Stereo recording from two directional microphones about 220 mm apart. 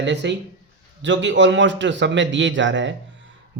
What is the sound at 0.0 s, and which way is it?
A man's voice, 50° right (ahead or behind).